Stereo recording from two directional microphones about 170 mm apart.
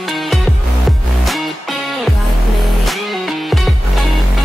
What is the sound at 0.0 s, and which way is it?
Music, centre (ahead or behind).